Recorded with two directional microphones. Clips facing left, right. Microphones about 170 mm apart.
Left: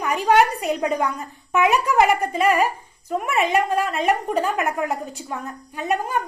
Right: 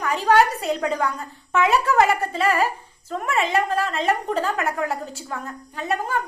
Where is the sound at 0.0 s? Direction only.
15° left (ahead or behind).